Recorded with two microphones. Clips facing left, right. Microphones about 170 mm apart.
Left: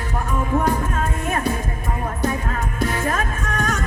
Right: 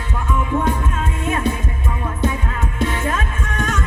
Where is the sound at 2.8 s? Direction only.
40° left (ahead or behind).